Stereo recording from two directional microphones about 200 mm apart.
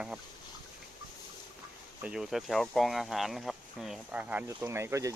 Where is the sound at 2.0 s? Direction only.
5° right (ahead or behind).